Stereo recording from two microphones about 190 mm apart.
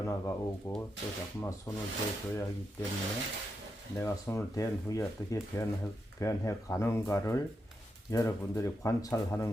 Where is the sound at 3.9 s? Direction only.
15° left (ahead or behind).